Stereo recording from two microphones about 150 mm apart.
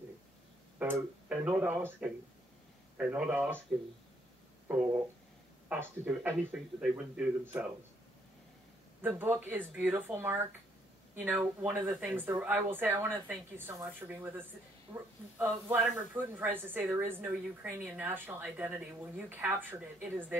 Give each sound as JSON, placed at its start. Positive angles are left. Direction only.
{"t": 0.7, "sound": "speech", "side_deg": -10}
{"t": 4.6, "sound": "speech", "side_deg": -10}
{"t": 9.0, "sound": "speech", "side_deg": -15}